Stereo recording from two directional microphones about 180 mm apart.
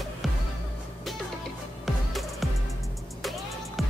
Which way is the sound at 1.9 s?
Centre (ahead or behind).